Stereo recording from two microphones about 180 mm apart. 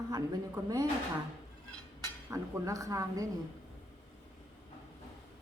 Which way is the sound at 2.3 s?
15° right (ahead or behind).